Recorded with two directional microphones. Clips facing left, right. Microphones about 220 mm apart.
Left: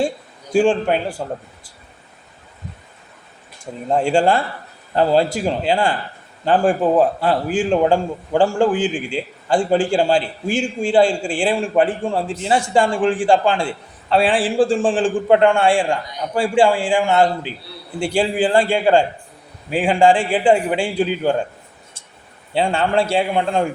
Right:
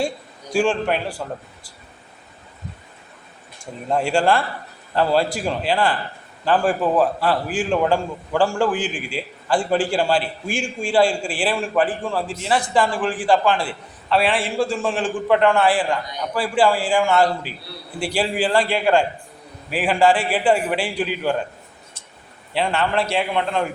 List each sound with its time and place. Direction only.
0.5 s a man's voice: 25° left (ahead or behind)
4.1 s a man's voice: 25° left (ahead or behind)
22.5 s a man's voice: 30° left (ahead or behind)